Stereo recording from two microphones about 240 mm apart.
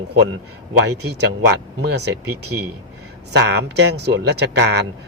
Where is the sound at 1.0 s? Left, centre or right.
Right.